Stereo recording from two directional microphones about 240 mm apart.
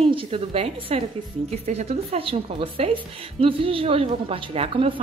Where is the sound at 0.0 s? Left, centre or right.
Right.